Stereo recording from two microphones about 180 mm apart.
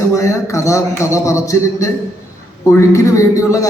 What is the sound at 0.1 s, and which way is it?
A man's voice, 15° left (ahead or behind).